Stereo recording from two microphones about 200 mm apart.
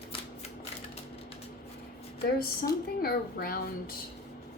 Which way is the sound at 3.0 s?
45° left (ahead or behind).